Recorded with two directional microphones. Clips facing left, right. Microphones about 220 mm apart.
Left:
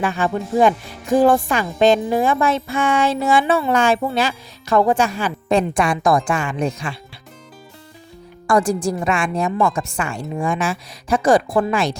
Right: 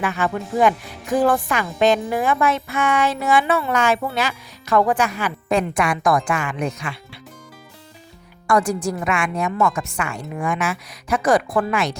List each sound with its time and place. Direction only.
0.0 s a woman's voice: 30° left (ahead or behind)
8.4 s a woman's voice: 30° left (ahead or behind)